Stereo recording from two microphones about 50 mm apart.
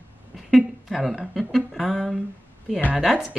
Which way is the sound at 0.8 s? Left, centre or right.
Centre.